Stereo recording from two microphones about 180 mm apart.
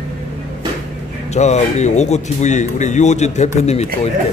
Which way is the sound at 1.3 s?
40° left (ahead or behind).